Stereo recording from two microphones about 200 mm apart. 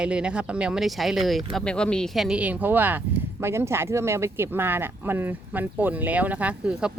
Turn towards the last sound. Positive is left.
turn(degrees=-5)  # may be behind; listen again after turning